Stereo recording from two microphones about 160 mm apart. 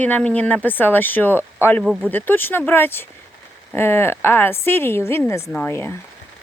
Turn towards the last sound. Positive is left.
turn(degrees=15)  # may be behind; listen again after turning